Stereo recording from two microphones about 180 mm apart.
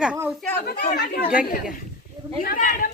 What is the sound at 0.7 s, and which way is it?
Speech, 60° left (ahead or behind).